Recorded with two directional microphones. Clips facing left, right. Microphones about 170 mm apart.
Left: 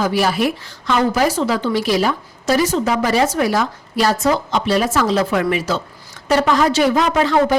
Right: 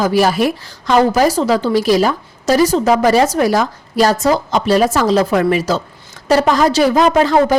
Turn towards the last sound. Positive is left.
turn(degrees=-40)  # may be behind; listen again after turning